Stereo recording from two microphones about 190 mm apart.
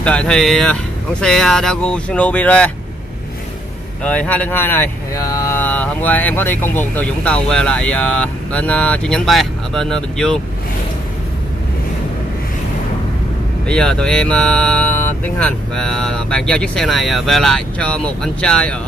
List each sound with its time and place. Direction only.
0.0 s speech: 5° left (ahead or behind)
4.0 s speech: 5° left (ahead or behind)
13.7 s speech: 5° left (ahead or behind)